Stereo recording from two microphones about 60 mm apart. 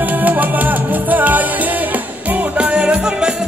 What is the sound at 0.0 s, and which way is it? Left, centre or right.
Music, right.